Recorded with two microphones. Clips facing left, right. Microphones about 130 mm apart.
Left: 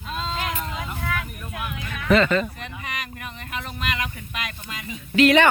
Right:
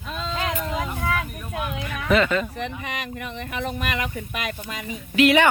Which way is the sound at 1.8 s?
10° right (ahead or behind).